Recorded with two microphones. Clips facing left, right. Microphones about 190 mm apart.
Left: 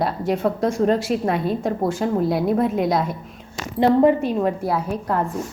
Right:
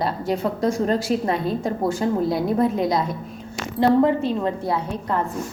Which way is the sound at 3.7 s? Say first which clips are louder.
Left 2 dB; 15° left (ahead or behind).